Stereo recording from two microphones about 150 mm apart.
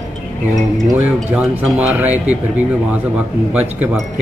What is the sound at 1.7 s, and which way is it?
Speech, 10° right (ahead or behind).